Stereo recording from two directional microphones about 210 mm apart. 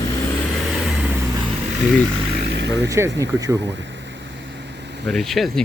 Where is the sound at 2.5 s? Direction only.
55° right (ahead or behind).